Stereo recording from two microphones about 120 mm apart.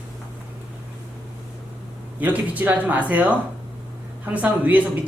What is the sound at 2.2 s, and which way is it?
A man's voice, 15° right (ahead or behind).